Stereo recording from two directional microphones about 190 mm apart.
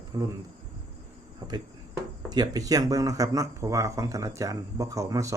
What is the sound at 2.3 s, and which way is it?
Speech, 20° right (ahead or behind).